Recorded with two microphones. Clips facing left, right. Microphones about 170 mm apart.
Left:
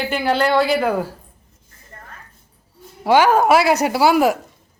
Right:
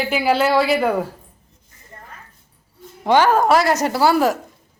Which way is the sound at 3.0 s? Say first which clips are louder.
Left 1 dB; 10° left (ahead or behind).